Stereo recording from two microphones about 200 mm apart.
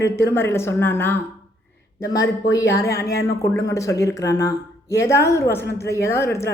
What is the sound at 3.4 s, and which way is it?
A woman's voice, 15° left (ahead or behind).